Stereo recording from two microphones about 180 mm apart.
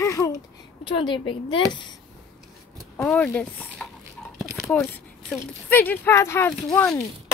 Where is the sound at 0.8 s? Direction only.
30° left (ahead or behind).